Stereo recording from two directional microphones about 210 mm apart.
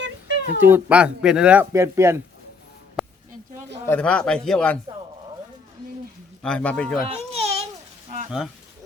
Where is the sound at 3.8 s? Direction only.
5° left (ahead or behind).